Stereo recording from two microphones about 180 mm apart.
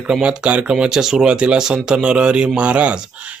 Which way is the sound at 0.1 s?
5° right (ahead or behind).